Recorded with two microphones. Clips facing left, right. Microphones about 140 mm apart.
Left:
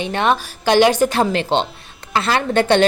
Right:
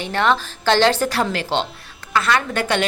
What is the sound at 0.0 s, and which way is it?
A woman's voice, 20° left (ahead or behind).